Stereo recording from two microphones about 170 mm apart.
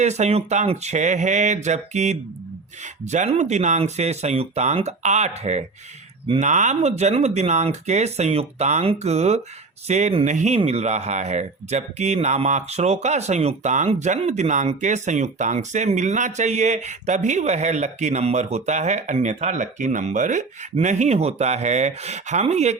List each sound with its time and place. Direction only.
0.0 s speech: 40° right (ahead or behind)